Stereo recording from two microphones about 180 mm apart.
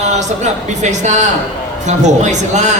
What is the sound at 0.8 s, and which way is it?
A man's voice, 40° right (ahead or behind).